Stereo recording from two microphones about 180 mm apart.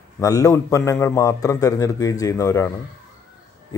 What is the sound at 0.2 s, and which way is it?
A man's voice, 20° left (ahead or behind).